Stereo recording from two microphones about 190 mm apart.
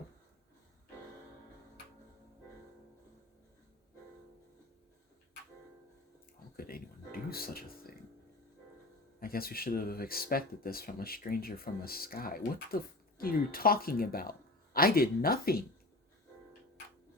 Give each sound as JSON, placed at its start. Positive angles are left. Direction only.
{"t": 6.6, "sound": "music", "side_deg": 50}
{"t": 9.2, "sound": "speech", "side_deg": 50}